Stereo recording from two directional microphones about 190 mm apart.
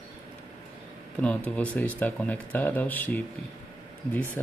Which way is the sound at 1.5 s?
10° left (ahead or behind).